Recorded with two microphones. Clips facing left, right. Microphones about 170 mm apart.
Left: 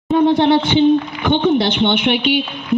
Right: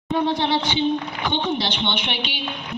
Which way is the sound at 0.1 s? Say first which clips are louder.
Left 9 dB; 55° left (ahead or behind).